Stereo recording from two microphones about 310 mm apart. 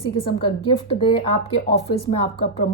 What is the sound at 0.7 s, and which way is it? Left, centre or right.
A woman's voice, centre.